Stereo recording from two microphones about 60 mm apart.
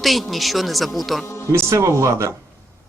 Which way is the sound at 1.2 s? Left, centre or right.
Left.